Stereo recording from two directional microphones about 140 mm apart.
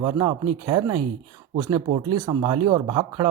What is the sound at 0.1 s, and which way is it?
Speech, 35° right (ahead or behind).